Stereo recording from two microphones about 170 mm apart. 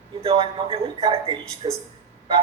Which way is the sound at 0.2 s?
35° right (ahead or behind).